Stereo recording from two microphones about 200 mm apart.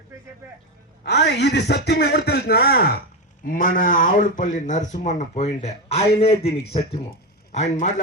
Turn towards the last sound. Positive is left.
turn(degrees=35)  # may be behind; listen again after turning